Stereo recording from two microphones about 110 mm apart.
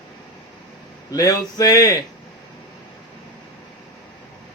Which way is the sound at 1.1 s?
35° left (ahead or behind).